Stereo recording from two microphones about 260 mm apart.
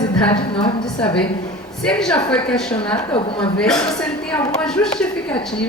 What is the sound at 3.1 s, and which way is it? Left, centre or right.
Speech, centre.